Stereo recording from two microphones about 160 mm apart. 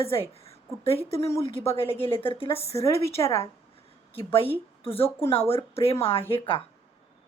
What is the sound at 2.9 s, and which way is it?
Speech, 20° left (ahead or behind).